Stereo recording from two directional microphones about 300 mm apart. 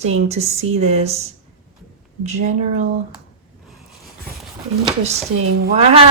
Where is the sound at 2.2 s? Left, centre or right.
Right.